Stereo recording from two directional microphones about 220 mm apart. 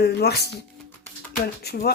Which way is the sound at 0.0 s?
50° left (ahead or behind).